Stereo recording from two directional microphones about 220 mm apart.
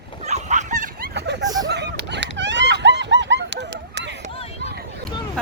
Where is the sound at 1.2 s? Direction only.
50° right (ahead or behind).